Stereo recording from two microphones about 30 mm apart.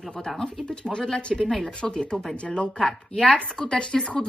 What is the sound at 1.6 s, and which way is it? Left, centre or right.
Speech, left.